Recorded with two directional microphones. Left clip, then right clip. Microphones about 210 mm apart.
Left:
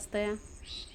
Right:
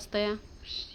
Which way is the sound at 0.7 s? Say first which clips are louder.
Right 6 dB; 40° right (ahead or behind).